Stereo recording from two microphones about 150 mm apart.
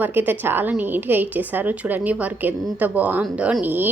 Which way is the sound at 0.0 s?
15° right (ahead or behind).